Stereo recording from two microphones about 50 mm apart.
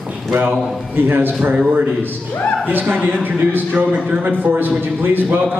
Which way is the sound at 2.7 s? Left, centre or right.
Right.